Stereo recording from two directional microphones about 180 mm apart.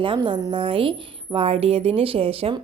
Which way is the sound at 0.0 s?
30° right (ahead or behind).